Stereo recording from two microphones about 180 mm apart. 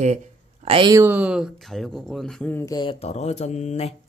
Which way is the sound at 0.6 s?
25° right (ahead or behind).